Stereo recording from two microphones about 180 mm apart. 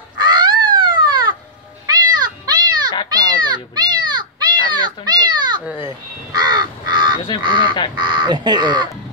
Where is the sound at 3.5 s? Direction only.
25° right (ahead or behind).